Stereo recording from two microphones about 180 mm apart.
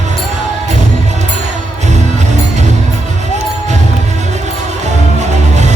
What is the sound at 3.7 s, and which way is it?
Music, 40° right (ahead or behind).